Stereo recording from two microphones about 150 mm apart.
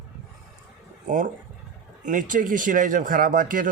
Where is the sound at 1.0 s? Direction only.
60° right (ahead or behind).